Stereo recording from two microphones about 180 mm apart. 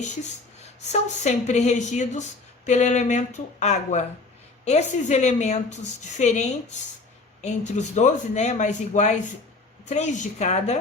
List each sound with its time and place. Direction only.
1.1 s speech: 40° left (ahead or behind)